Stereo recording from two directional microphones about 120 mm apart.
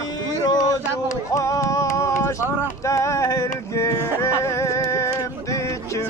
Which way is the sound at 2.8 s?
25° left (ahead or behind).